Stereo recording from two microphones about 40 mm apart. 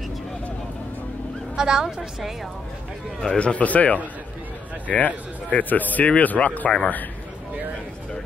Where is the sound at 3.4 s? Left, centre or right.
Left.